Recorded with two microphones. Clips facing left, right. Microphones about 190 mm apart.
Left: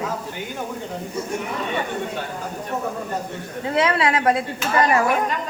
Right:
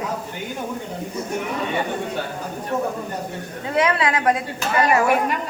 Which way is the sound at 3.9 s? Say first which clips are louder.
Left 1 dB; 30° left (ahead or behind).